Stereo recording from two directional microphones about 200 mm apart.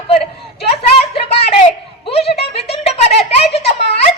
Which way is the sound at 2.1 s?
30° left (ahead or behind).